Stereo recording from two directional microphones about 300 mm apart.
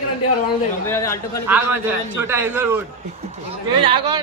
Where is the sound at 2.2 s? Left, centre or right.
Centre.